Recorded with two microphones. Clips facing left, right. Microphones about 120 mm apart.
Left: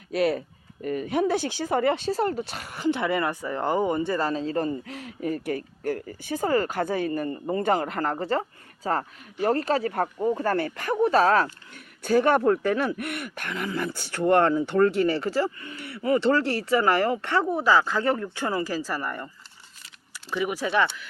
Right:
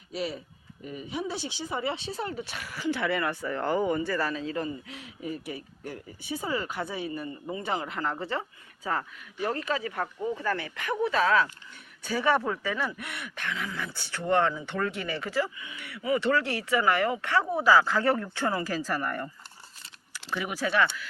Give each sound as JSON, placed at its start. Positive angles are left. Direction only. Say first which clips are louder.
{"t": 0.1, "sound": "speech", "louder": "left 9 dB", "side_deg": 60}
{"t": 2.4, "sound": "speech", "louder": "left 5 dB", "side_deg": 30}
{"t": 11.7, "sound": "speech", "louder": "left 10 dB", "side_deg": 55}
{"t": 20.3, "sound": "speech", "louder": "left 3 dB", "side_deg": 20}